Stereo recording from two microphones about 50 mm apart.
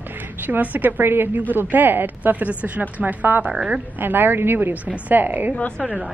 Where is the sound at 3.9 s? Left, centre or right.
Right.